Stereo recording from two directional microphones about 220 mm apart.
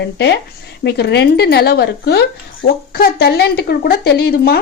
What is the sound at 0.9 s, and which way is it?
Speech, 50° left (ahead or behind).